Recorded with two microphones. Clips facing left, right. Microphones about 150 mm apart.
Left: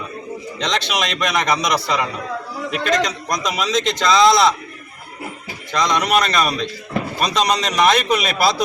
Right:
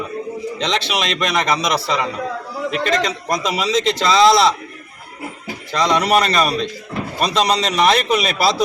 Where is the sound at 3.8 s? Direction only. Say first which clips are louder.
Right 1 dB; 30° right (ahead or behind).